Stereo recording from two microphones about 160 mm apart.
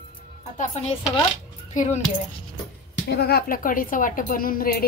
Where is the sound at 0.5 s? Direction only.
45° left (ahead or behind).